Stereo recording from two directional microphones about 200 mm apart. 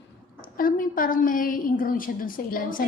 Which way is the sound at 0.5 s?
45° left (ahead or behind).